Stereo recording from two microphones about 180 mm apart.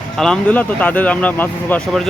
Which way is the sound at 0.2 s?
5° left (ahead or behind).